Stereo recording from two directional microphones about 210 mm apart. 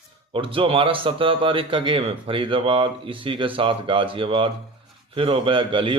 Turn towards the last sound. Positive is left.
turn(degrees=-25)  # may be behind; listen again after turning